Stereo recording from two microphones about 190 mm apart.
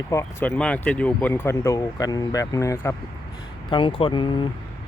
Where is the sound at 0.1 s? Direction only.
15° left (ahead or behind).